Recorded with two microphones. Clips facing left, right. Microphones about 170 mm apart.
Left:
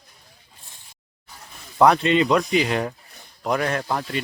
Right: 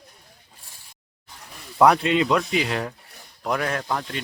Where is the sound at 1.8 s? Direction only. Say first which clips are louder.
Left 1 dB; 5° right (ahead or behind).